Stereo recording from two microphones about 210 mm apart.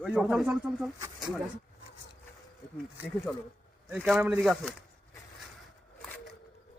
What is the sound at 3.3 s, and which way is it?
A man's voice, centre (ahead or behind).